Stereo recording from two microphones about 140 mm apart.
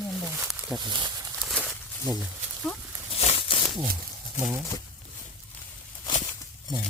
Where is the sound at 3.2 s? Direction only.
45° left (ahead or behind).